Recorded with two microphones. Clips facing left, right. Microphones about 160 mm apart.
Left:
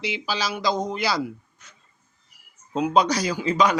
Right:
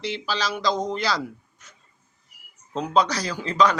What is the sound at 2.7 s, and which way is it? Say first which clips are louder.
Speech: left 2 dB; 10° left (ahead or behind).